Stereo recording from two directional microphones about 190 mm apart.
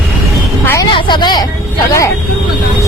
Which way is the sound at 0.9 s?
25° left (ahead or behind).